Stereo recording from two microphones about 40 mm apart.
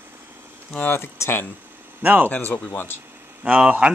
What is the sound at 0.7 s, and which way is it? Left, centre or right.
Speech, left.